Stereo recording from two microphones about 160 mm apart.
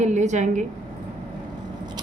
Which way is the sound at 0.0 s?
45° right (ahead or behind).